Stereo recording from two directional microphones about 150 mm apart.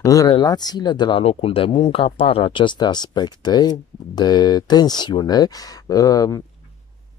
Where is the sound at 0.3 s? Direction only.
30° left (ahead or behind).